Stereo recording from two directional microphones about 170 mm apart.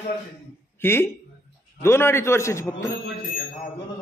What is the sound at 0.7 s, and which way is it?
A man's voice, 15° left (ahead or behind).